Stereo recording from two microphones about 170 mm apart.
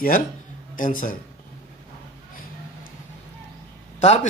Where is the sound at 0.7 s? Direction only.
55° left (ahead or behind).